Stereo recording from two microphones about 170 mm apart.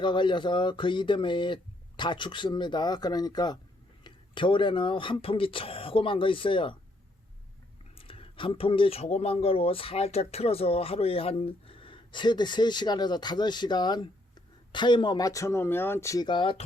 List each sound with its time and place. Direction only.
0.0 s speech: 25° left (ahead or behind)
7.9 s speech: 30° left (ahead or behind)